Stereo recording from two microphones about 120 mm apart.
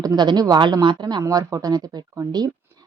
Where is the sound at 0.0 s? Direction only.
35° right (ahead or behind).